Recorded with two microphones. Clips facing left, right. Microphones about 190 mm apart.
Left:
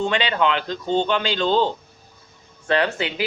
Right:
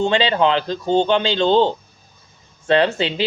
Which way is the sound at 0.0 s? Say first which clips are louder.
Right 4 dB; 30° right (ahead or behind).